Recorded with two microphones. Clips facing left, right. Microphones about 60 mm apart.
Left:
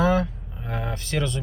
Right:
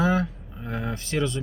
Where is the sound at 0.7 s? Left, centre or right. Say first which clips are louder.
Even; left.